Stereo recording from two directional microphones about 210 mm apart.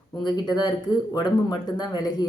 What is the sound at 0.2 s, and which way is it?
Speech, 20° left (ahead or behind).